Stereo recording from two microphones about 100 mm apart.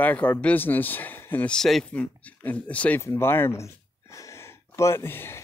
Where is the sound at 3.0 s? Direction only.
25° left (ahead or behind).